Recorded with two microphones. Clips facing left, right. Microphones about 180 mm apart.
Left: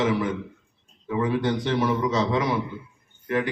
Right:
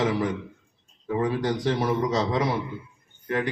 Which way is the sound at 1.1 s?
35° right (ahead or behind).